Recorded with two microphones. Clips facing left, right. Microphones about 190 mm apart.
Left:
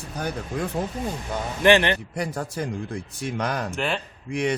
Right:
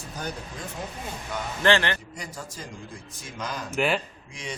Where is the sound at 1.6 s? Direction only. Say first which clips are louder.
Left 5 dB; 20° left (ahead or behind).